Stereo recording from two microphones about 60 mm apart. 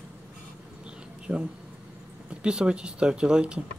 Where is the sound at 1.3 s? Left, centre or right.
Centre.